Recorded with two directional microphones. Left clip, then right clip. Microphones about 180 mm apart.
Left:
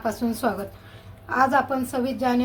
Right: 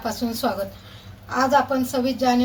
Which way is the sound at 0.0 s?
40° left (ahead or behind).